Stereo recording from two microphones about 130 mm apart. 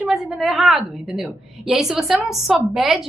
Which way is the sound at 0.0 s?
Centre (ahead or behind).